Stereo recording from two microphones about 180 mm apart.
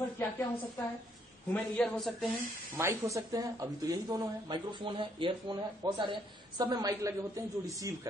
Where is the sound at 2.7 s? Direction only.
15° right (ahead or behind).